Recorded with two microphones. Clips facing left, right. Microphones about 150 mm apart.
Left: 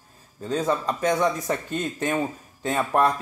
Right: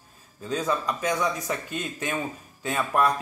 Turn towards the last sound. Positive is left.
turn(degrees=25)  # may be behind; listen again after turning